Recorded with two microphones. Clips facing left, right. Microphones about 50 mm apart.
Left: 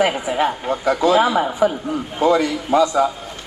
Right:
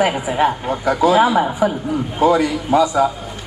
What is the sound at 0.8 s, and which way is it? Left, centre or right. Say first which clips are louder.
Speech: right 2 dB; centre.